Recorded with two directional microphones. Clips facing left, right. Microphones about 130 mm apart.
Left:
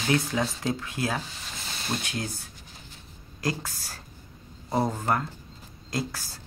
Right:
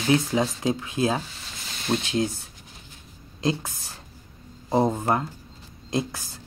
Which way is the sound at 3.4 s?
20° right (ahead or behind).